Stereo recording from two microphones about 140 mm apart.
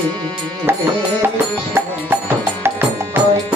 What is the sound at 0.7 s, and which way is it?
Tabla, 15° right (ahead or behind).